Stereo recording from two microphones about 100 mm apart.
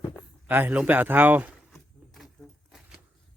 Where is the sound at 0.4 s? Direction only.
20° right (ahead or behind).